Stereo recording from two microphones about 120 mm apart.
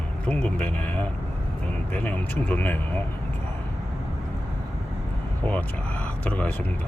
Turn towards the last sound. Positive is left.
turn(degrees=10)  # may be behind; listen again after turning